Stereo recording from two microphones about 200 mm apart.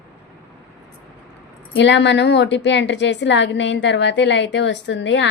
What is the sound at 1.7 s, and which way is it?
A woman's voice, 65° left (ahead or behind).